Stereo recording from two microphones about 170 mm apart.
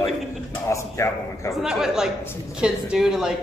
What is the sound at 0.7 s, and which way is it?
Speech, 15° left (ahead or behind).